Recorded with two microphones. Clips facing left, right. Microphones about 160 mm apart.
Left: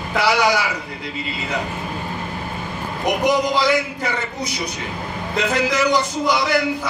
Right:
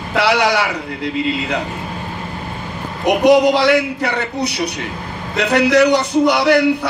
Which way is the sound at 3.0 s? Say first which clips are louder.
Right 8 dB; 65° right (ahead or behind).